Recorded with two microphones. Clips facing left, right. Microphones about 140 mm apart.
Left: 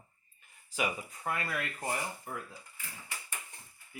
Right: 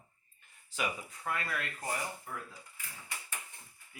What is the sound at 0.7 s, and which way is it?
Speech, 10° left (ahead or behind).